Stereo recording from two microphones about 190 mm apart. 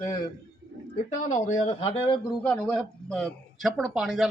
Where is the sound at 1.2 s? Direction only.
40° left (ahead or behind).